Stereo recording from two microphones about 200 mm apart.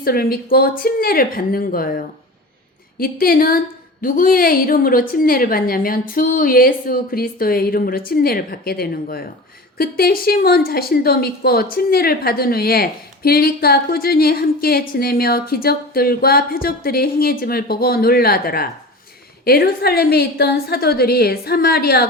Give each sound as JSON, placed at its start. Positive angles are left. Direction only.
{"t": 0.0, "sound": "a woman's voice", "side_deg": 50}